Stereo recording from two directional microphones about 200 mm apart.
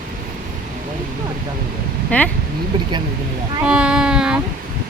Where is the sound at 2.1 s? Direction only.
5° left (ahead or behind).